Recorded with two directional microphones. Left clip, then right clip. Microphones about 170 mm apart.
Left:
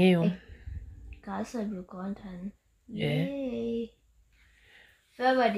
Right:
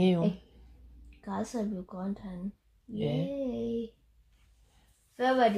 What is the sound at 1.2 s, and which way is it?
Speech, 45° right (ahead or behind).